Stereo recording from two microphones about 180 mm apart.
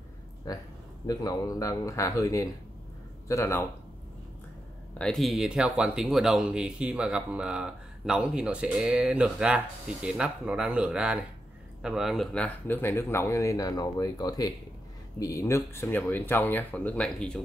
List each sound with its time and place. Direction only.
0.5 s speech: 20° left (ahead or behind)
4.9 s speech: 5° left (ahead or behind)